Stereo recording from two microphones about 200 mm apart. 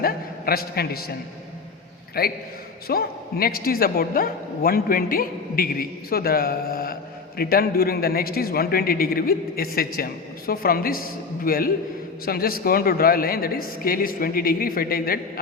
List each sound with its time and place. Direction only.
0.0 s a man's voice: 50° left (ahead or behind)
2.2 s a man's voice: 50° left (ahead or behind)